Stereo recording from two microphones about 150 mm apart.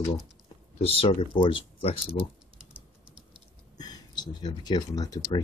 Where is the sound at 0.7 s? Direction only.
40° left (ahead or behind).